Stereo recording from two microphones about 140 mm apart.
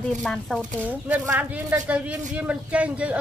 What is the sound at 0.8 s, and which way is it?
Speech, 10° right (ahead or behind).